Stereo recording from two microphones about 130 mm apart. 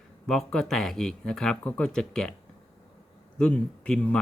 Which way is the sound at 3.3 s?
5° left (ahead or behind).